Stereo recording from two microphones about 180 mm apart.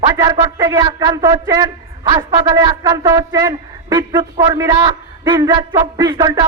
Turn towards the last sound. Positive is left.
turn(degrees=-25)  # may be behind; listen again after turning